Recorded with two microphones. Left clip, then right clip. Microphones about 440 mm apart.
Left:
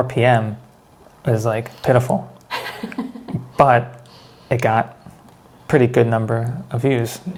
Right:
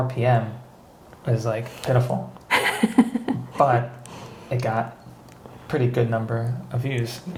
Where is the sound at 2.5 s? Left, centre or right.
Right.